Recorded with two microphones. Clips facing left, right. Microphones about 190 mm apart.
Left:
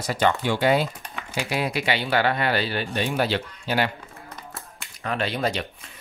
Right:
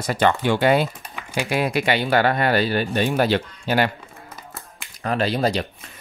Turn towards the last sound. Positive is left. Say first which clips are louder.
# right 5 dB
turn(degrees=-35)  # may be behind; listen again after turning